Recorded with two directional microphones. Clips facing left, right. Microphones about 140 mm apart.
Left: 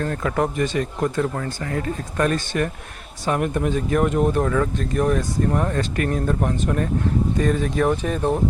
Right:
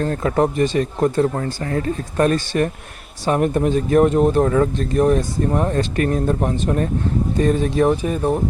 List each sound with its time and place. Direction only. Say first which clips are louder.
0.0 s speech: right 4 dB; 35° right (ahead or behind)
8.0 s speech: right 2 dB; 5° right (ahead or behind)